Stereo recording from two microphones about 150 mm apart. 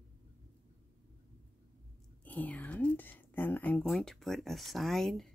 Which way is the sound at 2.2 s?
10° left (ahead or behind).